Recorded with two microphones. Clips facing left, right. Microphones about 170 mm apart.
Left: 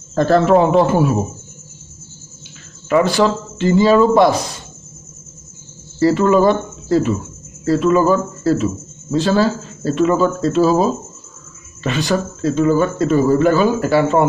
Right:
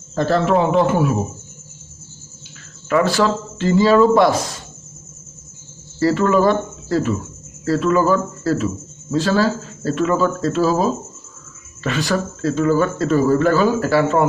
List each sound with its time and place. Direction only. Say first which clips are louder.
0.1 s a man's voice: left 4 dB; 50° left (ahead or behind); by 1.1 s 35° left (ahead or behind)
2.9 s speech: left 2 dB; 20° left (ahead or behind)
5.9 s speech: left 3 dB; 20° left (ahead or behind)